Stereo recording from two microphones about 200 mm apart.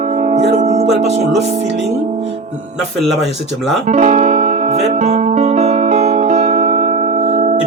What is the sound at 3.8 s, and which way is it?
Music, 35° right (ahead or behind).